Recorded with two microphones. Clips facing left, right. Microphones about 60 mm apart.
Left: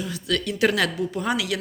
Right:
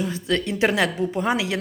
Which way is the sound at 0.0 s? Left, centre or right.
Right.